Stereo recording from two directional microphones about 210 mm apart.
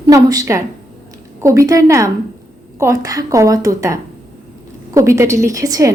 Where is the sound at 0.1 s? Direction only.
15° right (ahead or behind).